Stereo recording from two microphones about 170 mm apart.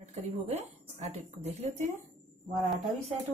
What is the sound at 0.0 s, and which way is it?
Speech, 40° right (ahead or behind).